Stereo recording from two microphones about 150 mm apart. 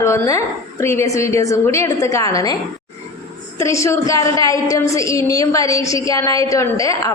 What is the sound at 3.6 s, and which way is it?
A woman's voice, 20° left (ahead or behind).